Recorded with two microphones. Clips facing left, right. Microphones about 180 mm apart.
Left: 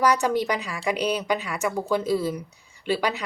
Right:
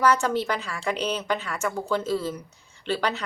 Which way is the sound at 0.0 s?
15° left (ahead or behind).